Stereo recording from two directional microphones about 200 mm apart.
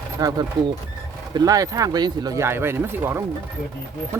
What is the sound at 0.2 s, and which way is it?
Speech, 20° right (ahead or behind).